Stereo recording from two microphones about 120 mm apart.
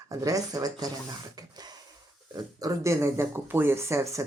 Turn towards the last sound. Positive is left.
turn(degrees=-25)  # may be behind; listen again after turning